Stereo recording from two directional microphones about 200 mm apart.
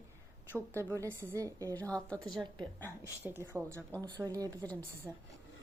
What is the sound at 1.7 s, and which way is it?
A woman's voice, 5° left (ahead or behind).